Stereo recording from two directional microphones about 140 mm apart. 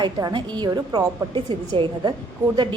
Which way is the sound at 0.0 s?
30° right (ahead or behind).